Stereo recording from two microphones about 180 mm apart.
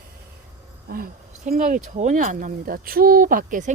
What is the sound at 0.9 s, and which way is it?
Speech, 55° right (ahead or behind).